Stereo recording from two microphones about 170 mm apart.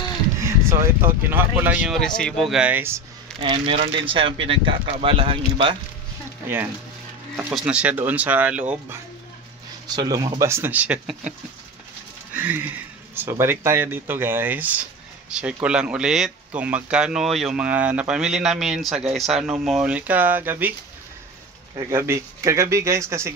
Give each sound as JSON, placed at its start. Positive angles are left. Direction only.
{"t": 0.4, "sound": "speech", "side_deg": -15}
{"t": 2.0, "sound": "speech", "side_deg": 5}
{"t": 3.3, "sound": "speech", "side_deg": -30}
{"t": 6.4, "sound": "speech", "side_deg": -10}
{"t": 9.9, "sound": "speech", "side_deg": -20}
{"t": 12.4, "sound": "speech", "side_deg": -10}
{"t": 21.7, "sound": "speech", "side_deg": -15}